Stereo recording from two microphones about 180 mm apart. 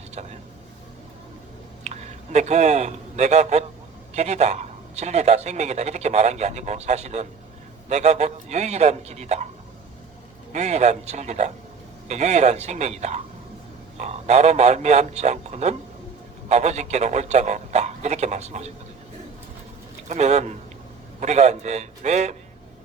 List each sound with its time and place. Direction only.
1.8 s a man's voice: 40° right (ahead or behind)
10.5 s a man's voice: 40° right (ahead or behind)
20.1 s a man's voice: 40° right (ahead or behind)